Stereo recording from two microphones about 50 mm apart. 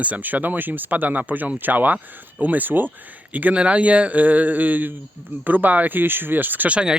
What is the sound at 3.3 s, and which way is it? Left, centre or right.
Speech, right.